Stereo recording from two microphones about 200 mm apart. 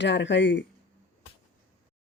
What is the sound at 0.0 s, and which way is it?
Speech, 65° left (ahead or behind).